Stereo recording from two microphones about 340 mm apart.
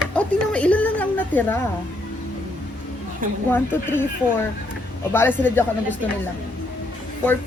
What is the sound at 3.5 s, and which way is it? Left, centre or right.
Speech, centre.